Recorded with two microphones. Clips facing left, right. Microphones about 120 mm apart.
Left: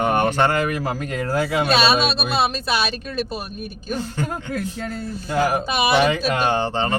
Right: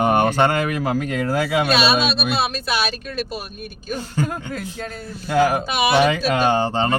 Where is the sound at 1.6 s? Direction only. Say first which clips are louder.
Left 2 dB; 30° left (ahead or behind).